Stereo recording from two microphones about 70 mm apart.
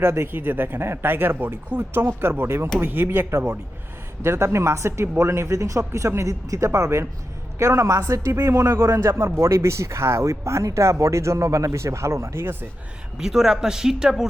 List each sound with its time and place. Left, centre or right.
0.0 s speech: right
13.1 s speech: centre